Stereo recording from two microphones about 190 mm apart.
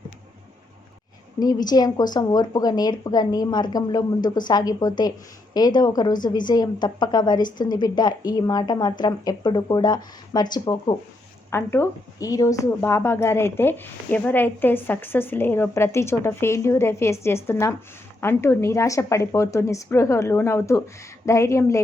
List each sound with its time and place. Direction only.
1.4 s a woman's voice: 20° left (ahead or behind)